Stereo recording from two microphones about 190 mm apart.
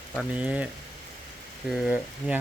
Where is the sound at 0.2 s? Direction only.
5° right (ahead or behind).